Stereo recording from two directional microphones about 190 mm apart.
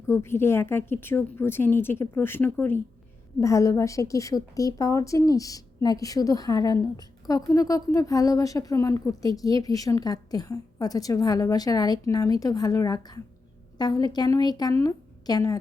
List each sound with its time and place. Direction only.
0.1 s a woman's voice: 15° left (ahead or behind)